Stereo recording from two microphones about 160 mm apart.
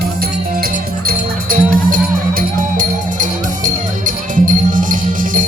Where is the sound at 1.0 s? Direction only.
60° right (ahead or behind).